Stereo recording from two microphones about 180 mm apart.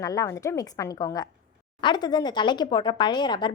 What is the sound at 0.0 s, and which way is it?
Speech, 20° left (ahead or behind).